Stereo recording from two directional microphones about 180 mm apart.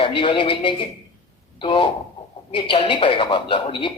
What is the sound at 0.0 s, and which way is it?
A man's voice, 25° left (ahead or behind).